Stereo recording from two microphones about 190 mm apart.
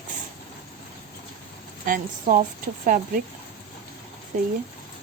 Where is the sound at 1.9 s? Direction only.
45° right (ahead or behind).